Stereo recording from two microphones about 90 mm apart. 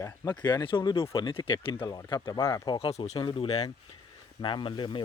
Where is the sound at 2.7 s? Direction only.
80° left.